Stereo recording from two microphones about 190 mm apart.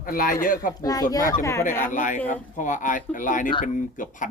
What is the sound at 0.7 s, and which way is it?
Speech, 20° left (ahead or behind).